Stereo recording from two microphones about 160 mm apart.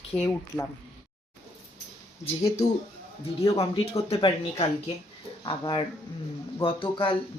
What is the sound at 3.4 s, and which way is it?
Speech, 35° left (ahead or behind).